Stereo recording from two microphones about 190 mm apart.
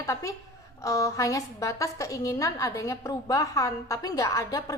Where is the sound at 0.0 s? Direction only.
15° left (ahead or behind).